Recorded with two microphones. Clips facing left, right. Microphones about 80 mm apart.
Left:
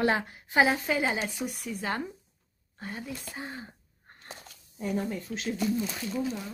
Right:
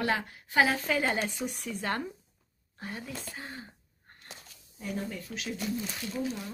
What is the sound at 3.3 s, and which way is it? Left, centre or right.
Speech, left.